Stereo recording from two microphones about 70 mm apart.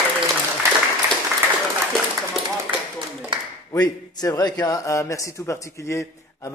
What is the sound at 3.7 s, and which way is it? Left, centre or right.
A man's voice, left.